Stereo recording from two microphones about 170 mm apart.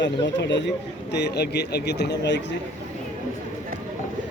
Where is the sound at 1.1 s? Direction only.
80° left.